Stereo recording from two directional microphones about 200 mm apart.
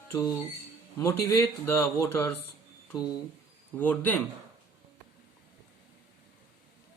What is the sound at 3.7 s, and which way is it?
Speech, 10° left (ahead or behind).